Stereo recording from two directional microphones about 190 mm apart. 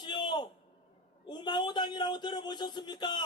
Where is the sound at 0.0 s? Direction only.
25° left (ahead or behind).